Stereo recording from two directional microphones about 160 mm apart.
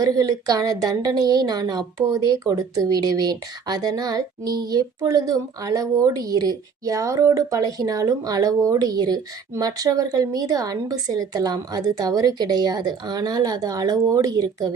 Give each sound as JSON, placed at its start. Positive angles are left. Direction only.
{"t": 0.0, "sound": "a woman's voice", "side_deg": -20}